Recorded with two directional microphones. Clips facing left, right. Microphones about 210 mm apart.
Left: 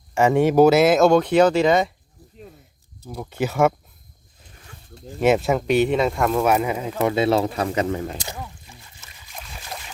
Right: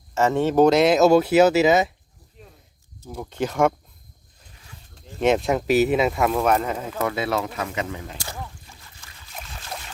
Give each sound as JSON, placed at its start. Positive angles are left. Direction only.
{"t": 0.1, "sound": "speech", "side_deg": 15}
{"t": 3.1, "sound": "speech", "side_deg": 10}
{"t": 5.2, "sound": "speech", "side_deg": 5}
{"t": 7.1, "sound": "speech", "side_deg": 25}
{"t": 9.0, "sound": "boat", "side_deg": 20}